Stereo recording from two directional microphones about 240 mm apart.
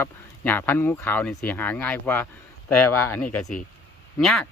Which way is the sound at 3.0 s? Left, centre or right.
Centre.